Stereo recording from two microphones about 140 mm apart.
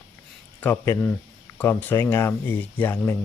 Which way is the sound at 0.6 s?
15° left (ahead or behind).